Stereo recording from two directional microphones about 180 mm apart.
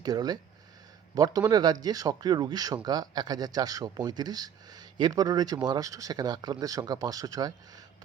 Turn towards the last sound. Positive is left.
turn(degrees=-20)  # may be behind; listen again after turning